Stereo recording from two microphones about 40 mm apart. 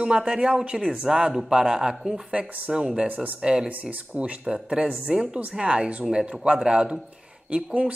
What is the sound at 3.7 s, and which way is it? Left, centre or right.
Speech, right.